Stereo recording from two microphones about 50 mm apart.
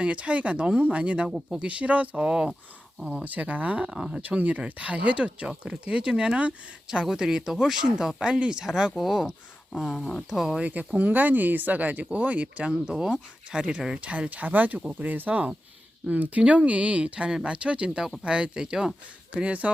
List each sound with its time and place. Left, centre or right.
0.0 s speech: right
3.2 s speech: right
3.8 s speech: centre
4.2 s speech: right; by 9.3 s centre
9.9 s speech: centre
10.2 s speech: centre
10.6 s speech: right
19.3 s speech: right